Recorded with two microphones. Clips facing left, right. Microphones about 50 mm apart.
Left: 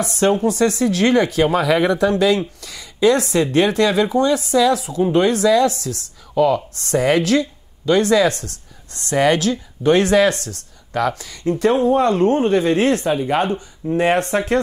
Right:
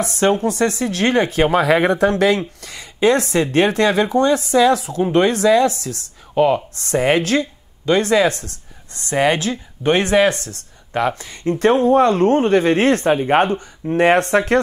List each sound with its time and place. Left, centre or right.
0.0 s speech: right
1.5 s speech: right